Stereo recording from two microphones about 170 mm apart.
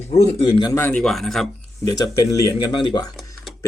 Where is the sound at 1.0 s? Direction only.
Centre (ahead or behind).